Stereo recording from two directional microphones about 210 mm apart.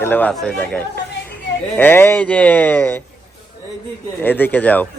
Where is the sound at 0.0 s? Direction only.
10° left (ahead or behind).